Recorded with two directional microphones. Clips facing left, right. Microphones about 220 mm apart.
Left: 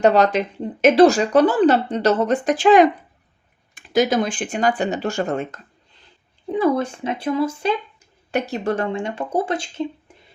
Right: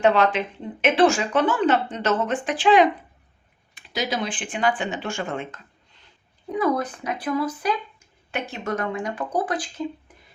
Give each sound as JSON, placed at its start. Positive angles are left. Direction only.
{"t": 0.0, "sound": "speech", "side_deg": 40}
{"t": 6.5, "sound": "speech", "side_deg": 30}
{"t": 8.3, "sound": "speech", "side_deg": 40}
{"t": 10.1, "sound": "a sound", "side_deg": 25}